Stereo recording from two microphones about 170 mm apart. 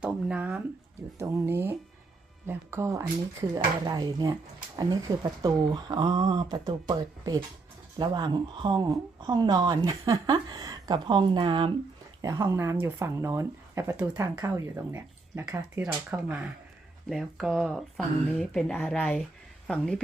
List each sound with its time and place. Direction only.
0.0 s speech: 5° right (ahead or behind)
1.2 s speech: 15° right (ahead or behind); by 20.0 s 5° left (ahead or behind)